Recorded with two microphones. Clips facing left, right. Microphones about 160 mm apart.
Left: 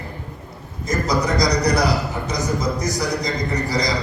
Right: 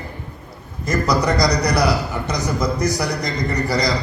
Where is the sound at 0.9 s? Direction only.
70° right (ahead or behind).